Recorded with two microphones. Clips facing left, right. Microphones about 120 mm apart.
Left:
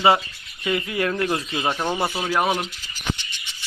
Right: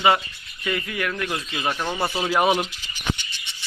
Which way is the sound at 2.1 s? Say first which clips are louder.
Right 2 dB; 5° right (ahead or behind).